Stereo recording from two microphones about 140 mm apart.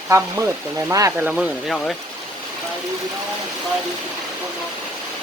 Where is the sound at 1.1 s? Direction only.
10° right (ahead or behind).